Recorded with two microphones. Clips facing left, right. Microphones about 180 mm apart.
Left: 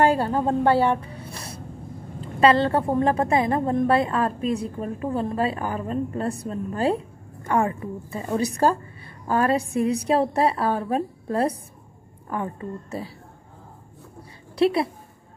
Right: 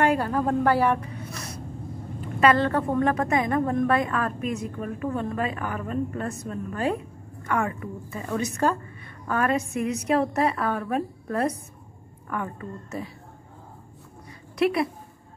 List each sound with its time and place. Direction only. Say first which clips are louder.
0.0 s a woman's voice: left 2 dB; 30° left (ahead or behind)
14.6 s a woman's voice: left 2 dB; 30° left (ahead or behind)